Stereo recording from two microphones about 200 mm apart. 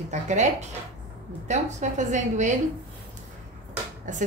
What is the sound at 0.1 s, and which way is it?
A woman's voice, 35° right (ahead or behind).